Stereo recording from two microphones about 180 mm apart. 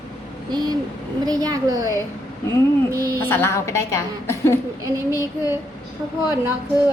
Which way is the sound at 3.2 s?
10° left (ahead or behind).